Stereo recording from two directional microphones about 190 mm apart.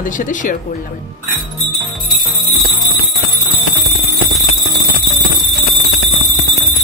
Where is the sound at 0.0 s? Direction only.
45° left (ahead or behind).